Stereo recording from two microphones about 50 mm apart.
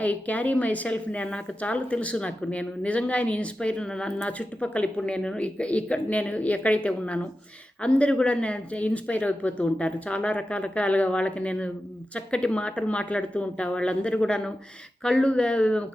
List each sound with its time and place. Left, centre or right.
0.0 s a woman's voice: left